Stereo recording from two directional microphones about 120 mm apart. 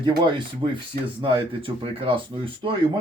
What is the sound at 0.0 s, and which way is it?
Speech, 40° right (ahead or behind).